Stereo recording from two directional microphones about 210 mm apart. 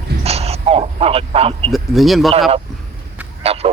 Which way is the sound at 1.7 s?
Centre (ahead or behind).